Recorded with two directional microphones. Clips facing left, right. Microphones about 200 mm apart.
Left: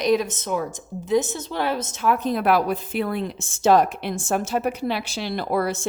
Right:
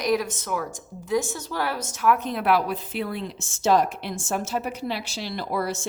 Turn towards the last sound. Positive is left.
turn(degrees=55)  # may be behind; listen again after turning